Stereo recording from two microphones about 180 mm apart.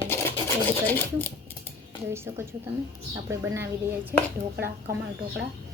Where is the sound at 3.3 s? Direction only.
15° right (ahead or behind).